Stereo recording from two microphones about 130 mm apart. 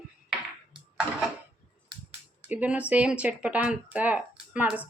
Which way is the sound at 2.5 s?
10° right (ahead or behind).